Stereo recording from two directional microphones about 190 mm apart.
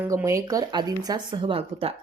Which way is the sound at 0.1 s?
15° right (ahead or behind).